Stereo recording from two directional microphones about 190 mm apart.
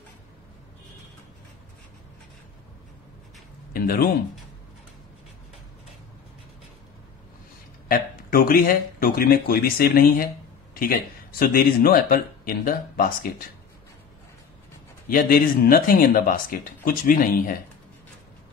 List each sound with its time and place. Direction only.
3.7 s speech: 50° left (ahead or behind)
7.9 s speech: 50° left (ahead or behind)
15.0 s speech: 50° left (ahead or behind)